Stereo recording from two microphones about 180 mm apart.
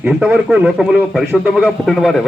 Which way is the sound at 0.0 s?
5° right (ahead or behind).